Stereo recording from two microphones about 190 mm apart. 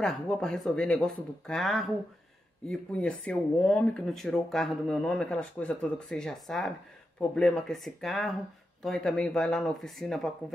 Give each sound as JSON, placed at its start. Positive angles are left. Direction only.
{"t": 0.0, "sound": "speech", "side_deg": 5}